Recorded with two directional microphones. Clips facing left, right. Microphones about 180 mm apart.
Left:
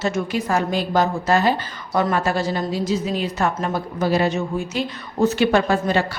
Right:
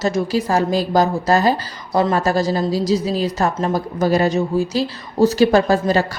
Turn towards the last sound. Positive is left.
turn(degrees=-40)  # may be behind; listen again after turning